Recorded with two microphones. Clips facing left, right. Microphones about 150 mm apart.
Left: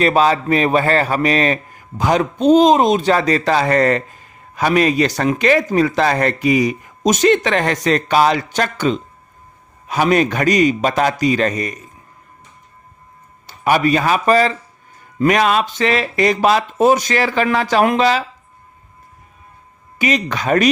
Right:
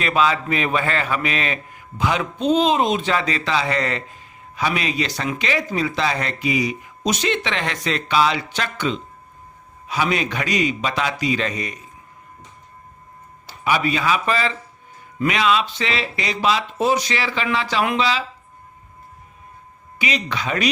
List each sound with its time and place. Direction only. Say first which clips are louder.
0.0 s a man's voice: left 5 dB; 40° left (ahead or behind)
13.5 s a man's voice: left 6 dB; 50° left (ahead or behind)
20.0 s a man's voice: left 6 dB; 45° left (ahead or behind)